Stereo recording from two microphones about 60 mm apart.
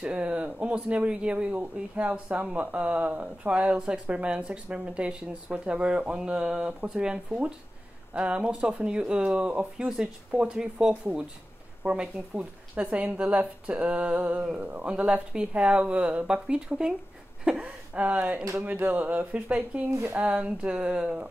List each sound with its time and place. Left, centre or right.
0.0 s speech: centre
19.7 s speech: centre